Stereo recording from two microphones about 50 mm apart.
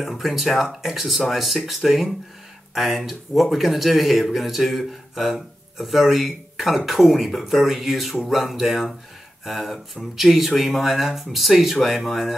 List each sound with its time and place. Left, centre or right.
0.0 s speech: centre